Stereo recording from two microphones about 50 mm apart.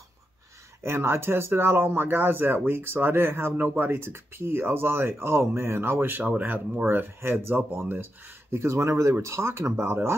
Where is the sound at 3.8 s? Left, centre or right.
Right.